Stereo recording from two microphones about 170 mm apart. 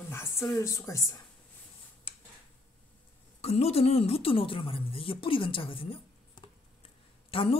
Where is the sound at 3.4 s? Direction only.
35° left (ahead or behind).